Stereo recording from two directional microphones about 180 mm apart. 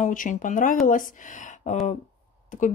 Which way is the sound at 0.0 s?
45° left (ahead or behind).